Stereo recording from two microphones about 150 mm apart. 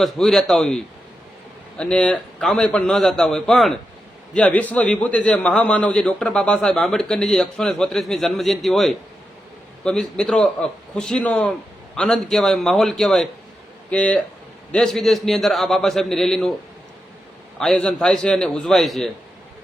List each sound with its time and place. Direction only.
0.0 s a man's voice: 5° left (ahead or behind)
1.8 s a man's voice: 5° left (ahead or behind)
17.6 s a man's voice: 5° left (ahead or behind)